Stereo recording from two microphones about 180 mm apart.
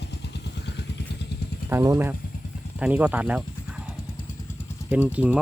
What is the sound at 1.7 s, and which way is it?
Speech, 15° right (ahead or behind).